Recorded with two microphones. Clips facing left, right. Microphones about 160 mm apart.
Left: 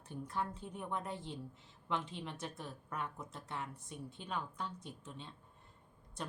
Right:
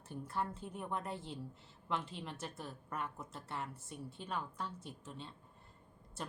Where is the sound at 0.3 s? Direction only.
5° right (ahead or behind).